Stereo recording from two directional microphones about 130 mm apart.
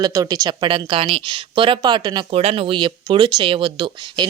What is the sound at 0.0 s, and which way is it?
Speech, 30° right (ahead or behind).